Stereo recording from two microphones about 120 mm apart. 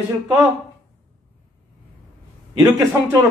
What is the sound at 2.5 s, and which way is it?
Speech, 30° right (ahead or behind).